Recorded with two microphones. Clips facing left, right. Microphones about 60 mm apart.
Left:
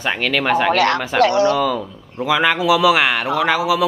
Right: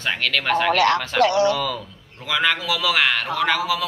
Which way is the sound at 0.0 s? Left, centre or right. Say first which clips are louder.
Left 4 dB; centre.